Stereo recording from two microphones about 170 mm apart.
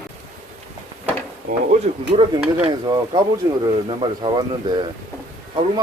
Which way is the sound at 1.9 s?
40° right (ahead or behind).